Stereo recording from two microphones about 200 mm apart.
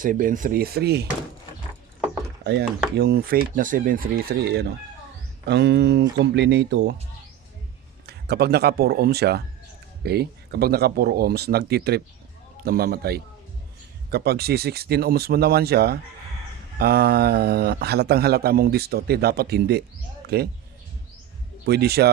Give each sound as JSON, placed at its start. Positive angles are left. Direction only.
{"t": 0.0, "sound": "speech", "side_deg": -40}
{"t": 2.4, "sound": "speech", "side_deg": -55}
{"t": 8.0, "sound": "speech", "side_deg": -55}
{"t": 21.7, "sound": "speech", "side_deg": -50}